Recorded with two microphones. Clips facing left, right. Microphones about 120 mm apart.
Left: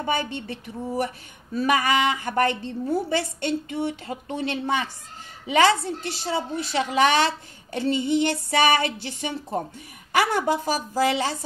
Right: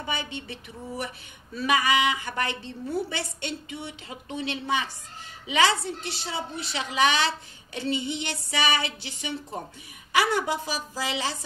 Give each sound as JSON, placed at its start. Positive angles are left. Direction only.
{"t": 0.0, "sound": "a woman's voice", "side_deg": 50}